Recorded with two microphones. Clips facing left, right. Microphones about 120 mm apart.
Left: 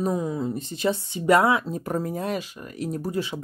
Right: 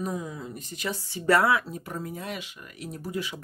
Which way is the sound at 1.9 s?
40° left (ahead or behind).